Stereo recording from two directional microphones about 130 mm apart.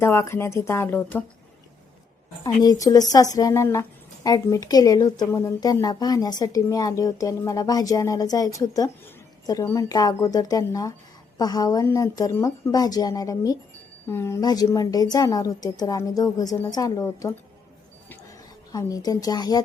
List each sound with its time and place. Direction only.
0.0 s speech: 20° left (ahead or behind)
2.4 s speech: 25° left (ahead or behind)